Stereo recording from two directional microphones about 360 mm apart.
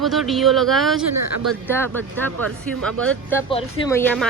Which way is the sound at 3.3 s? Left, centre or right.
Centre.